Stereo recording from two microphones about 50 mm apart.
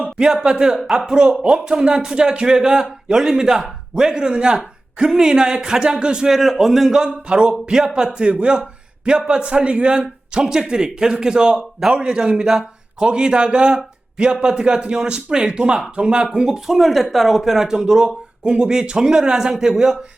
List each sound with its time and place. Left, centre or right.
0.0 s speech: centre
6.3 s a man's voice: centre; by 10.0 s right
10.3 s speech: centre